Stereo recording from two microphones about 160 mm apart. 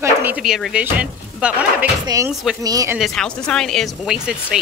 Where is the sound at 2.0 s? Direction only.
20° right (ahead or behind).